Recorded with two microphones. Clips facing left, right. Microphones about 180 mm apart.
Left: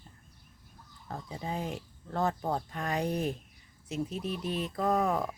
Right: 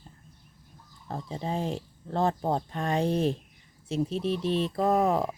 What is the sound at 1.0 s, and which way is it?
Speech, 25° right (ahead or behind).